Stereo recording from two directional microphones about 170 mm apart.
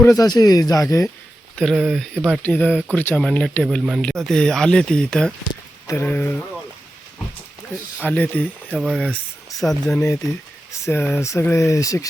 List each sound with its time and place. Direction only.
0.2 s speech: 20° left (ahead or behind)
1.5 s speech: centre (ahead or behind)
7.9 s speech: 10° left (ahead or behind)
10.0 s speech: 15° left (ahead or behind)